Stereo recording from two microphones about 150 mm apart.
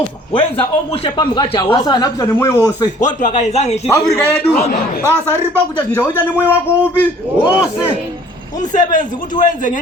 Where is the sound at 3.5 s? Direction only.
50° left (ahead or behind).